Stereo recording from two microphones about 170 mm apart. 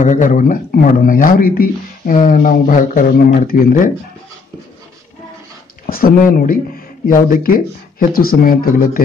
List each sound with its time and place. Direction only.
0.0 s speech: 45° left (ahead or behind)
5.9 s speech: 60° left (ahead or behind)